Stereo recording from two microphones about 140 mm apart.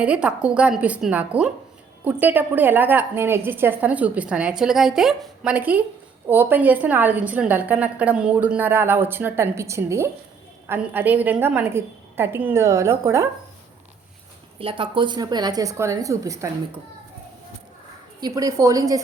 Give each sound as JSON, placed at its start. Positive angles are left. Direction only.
{"t": 0.0, "sound": "a woman's voice", "side_deg": -10}
{"t": 14.6, "sound": "a woman's voice", "side_deg": -40}
{"t": 18.2, "sound": "a woman's voice", "side_deg": -25}